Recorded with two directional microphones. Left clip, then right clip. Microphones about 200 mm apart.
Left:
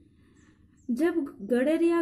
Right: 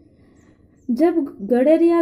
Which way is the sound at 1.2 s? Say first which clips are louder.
Right 9 dB; 5° right (ahead or behind).